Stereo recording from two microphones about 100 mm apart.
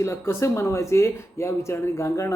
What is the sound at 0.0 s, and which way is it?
Speech, 30° left (ahead or behind).